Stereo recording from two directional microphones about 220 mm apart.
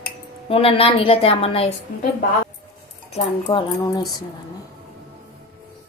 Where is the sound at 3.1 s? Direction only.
30° left (ahead or behind).